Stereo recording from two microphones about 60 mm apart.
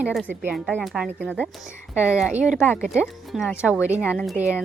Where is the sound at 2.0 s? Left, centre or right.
Centre.